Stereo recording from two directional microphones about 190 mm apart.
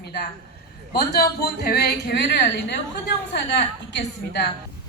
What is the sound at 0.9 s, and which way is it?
A woman's voice, 55° left (ahead or behind).